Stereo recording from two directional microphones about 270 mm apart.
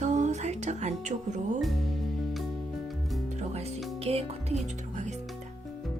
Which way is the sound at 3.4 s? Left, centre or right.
Right.